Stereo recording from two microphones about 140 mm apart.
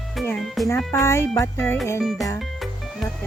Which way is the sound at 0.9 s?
20° left (ahead or behind).